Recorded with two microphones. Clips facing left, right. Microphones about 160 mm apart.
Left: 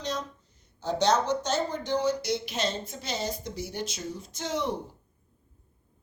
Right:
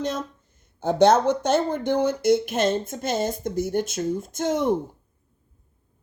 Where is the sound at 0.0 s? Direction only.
50° right (ahead or behind).